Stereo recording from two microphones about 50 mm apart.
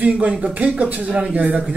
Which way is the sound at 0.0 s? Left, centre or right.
Right.